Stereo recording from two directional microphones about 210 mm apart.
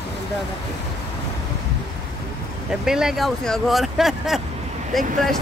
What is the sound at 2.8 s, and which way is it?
Speech, centre (ahead or behind).